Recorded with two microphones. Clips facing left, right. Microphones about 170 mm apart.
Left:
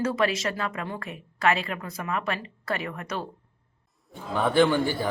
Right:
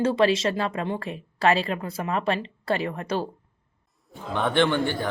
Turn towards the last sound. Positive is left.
turn(degrees=10)  # may be behind; listen again after turning